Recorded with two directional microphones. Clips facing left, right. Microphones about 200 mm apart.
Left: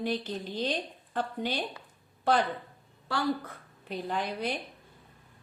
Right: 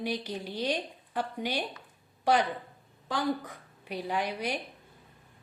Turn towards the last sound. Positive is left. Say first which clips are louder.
# even
turn(degrees=-10)  # may be behind; listen again after turning